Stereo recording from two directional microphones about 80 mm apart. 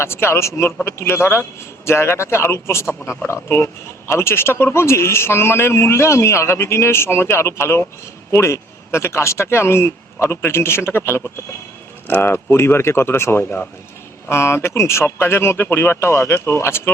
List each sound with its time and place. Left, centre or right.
0.0 s speech: left